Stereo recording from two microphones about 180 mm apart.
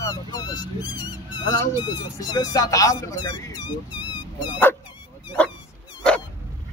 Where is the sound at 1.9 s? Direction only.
20° left (ahead or behind).